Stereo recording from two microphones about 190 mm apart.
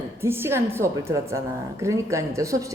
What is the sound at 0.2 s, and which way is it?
A woman's voice, 10° right (ahead or behind).